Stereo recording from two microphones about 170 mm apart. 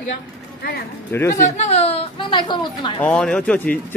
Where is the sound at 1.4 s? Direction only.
40° left (ahead or behind).